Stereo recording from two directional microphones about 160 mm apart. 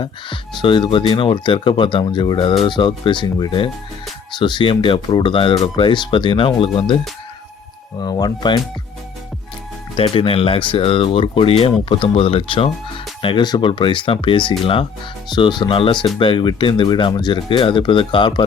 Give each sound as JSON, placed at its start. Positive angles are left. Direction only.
{"t": 0.0, "sound": "speech", "side_deg": 30}
{"t": 8.0, "sound": "speech", "side_deg": 25}
{"t": 10.0, "sound": "speech", "side_deg": 35}